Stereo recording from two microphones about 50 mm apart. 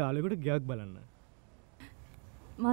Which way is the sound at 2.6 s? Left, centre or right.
Centre.